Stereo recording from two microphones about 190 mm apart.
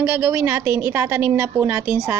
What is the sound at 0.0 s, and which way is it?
A woman's voice, 10° right (ahead or behind).